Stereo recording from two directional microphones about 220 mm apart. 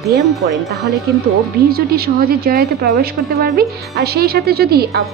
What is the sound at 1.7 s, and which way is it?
Speech, 45° right (ahead or behind).